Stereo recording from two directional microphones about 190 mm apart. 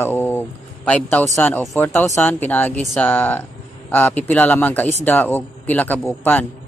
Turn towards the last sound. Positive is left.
turn(degrees=10)  # may be behind; listen again after turning